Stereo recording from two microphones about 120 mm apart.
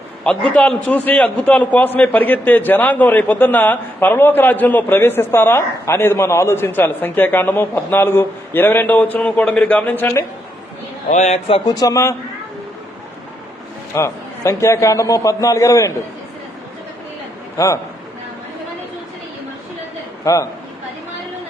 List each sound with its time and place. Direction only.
0.3 s a man's voice: 10° left (ahead or behind)
11.1 s speech: 75° left (ahead or behind)
11.4 s speech: 50° left (ahead or behind)
11.7 s a man's voice: 30° left (ahead or behind)
13.9 s a man's voice: 25° left (ahead or behind)
20.2 s a man's voice: 25° left (ahead or behind)